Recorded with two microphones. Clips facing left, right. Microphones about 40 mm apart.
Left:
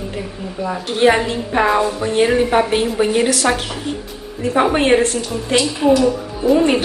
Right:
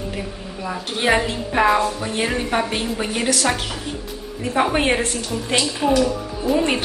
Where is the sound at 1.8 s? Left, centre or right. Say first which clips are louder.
Left 3 dB; centre.